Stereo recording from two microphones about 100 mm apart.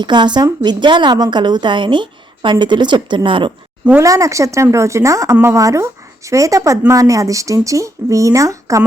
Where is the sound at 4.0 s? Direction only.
35° right (ahead or behind).